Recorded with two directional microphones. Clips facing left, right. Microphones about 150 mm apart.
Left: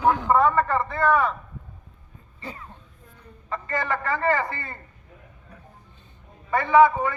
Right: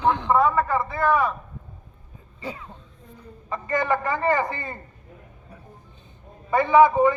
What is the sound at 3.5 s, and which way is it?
A man's voice, 15° right (ahead or behind).